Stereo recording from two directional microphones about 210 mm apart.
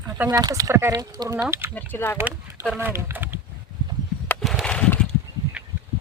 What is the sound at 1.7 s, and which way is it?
Speech, 10° left (ahead or behind).